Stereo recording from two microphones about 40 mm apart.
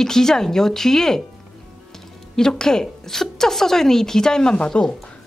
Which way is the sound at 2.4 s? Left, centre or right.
Centre.